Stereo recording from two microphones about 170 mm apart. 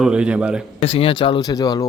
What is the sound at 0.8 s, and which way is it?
Speech, 35° left (ahead or behind).